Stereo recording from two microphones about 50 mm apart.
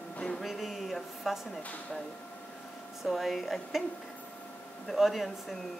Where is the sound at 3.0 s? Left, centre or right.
Centre.